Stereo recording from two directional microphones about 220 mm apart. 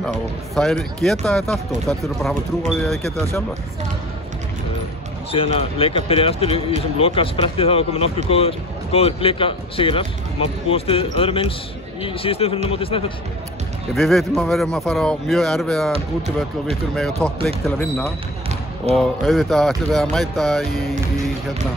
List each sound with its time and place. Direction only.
0.6 s speech: centre (ahead or behind)
5.3 s speech: 25° left (ahead or behind)
13.9 s speech: centre (ahead or behind)
17.2 s speech: 5° left (ahead or behind)